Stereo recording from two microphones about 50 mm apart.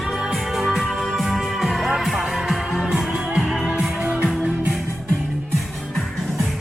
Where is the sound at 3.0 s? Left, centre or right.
Centre.